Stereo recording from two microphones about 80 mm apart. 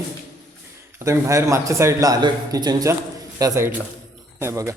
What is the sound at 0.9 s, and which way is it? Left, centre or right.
Speech, right.